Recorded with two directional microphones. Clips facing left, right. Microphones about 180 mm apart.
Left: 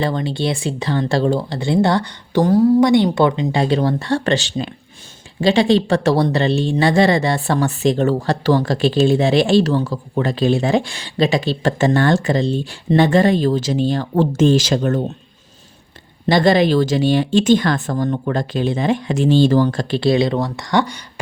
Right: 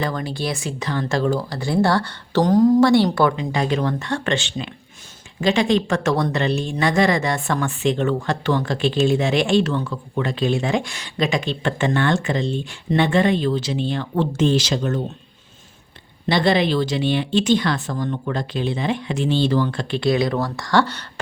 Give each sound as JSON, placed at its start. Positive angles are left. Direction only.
{"t": 0.0, "sound": "speech", "side_deg": 25}
{"t": 16.2, "sound": "speech", "side_deg": 45}